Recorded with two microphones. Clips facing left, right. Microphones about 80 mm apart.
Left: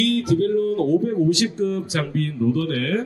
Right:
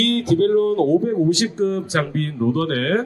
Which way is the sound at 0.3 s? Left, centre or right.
Right.